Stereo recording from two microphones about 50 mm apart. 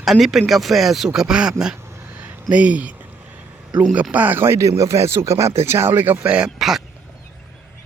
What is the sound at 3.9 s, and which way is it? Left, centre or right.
Speech, right.